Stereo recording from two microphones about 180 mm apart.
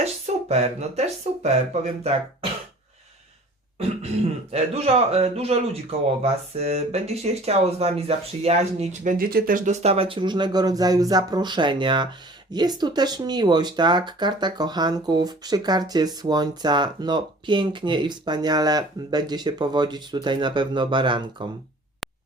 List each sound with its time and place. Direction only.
0.0 s speech: 35° right (ahead or behind)
4.5 s speech: 35° right (ahead or behind)